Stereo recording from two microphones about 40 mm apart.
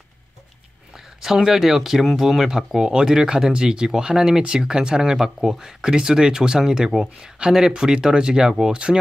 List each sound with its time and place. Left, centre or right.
0.9 s speech: centre